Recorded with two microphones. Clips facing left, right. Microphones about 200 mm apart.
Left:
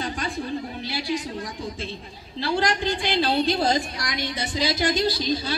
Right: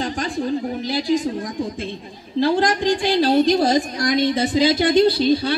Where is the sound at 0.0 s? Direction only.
40° right (ahead or behind).